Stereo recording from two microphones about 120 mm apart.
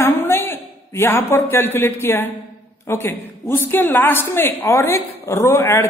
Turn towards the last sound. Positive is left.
turn(degrees=20)  # may be behind; listen again after turning